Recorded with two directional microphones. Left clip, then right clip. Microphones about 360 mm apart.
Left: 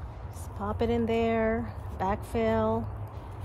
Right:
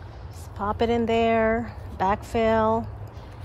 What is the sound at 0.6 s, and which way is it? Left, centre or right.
A woman's voice, right.